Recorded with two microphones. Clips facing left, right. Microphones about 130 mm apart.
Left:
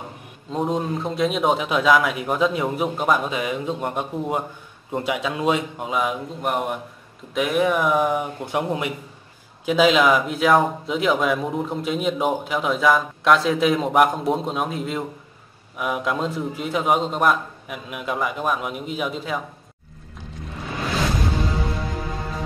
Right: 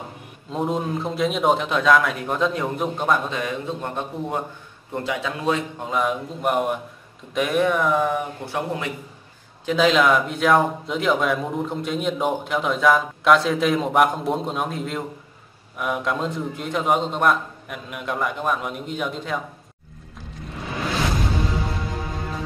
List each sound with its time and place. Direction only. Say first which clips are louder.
0.5 s a man's voice: left 1 dB; centre (ahead or behind)
7.9 s a man's voice: left 1 dB; 15° left (ahead or behind)
9.7 s a man's voice: left 1 dB; 5° left (ahead or behind)